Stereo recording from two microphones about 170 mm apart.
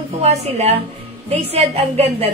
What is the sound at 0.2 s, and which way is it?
A woman's voice, 40° right (ahead or behind).